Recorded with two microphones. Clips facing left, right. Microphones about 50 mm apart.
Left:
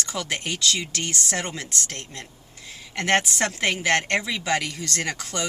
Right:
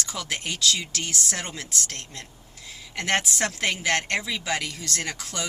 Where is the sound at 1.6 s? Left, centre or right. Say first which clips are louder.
Left 1 dB; left.